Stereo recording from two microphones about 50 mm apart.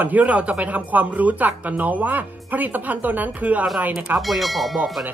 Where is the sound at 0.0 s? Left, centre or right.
Right.